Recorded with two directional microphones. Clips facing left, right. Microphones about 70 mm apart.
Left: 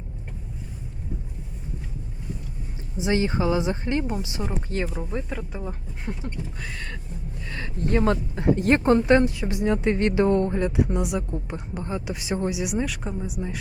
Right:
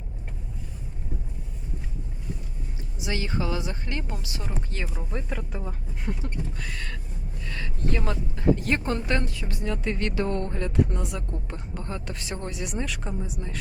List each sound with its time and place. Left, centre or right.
3.0 s speech: left
4.9 s a woman's voice: centre
7.5 s speech: left
8.5 s a woman's voice: left; by 13.6 s centre